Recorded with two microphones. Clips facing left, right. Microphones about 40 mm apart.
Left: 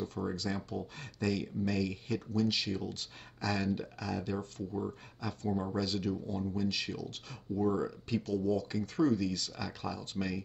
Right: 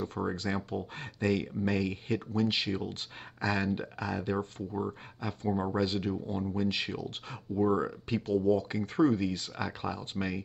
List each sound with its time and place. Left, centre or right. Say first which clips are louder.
0.0 s speech: right 3 dB; right